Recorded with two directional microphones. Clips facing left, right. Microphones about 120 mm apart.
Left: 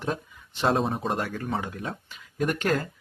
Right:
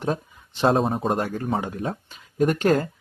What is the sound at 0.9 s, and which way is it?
Speech, 30° right (ahead or behind).